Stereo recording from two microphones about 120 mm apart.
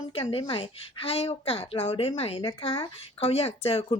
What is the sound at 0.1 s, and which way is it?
A woman's voice, 45° left (ahead or behind).